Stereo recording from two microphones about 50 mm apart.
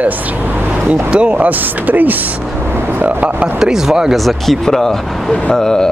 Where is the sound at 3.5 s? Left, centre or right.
Centre.